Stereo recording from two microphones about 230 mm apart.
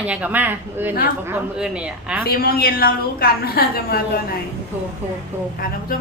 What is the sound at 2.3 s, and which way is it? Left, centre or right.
A woman's voice, left.